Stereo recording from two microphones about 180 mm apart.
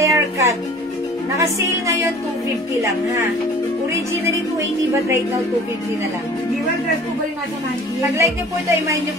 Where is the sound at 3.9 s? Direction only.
15° right (ahead or behind).